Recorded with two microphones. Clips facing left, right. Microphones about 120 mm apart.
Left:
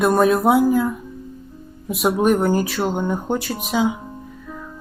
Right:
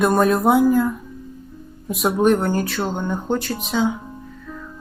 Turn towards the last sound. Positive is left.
turn(degrees=10)  # may be behind; listen again after turning